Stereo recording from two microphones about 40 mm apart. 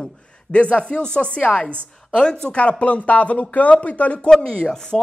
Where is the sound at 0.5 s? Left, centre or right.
Left.